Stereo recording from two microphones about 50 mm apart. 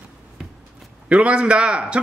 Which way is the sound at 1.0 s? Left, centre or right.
Right.